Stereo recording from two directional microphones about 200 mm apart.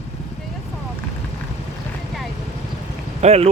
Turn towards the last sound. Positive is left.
turn(degrees=-30)  # may be behind; listen again after turning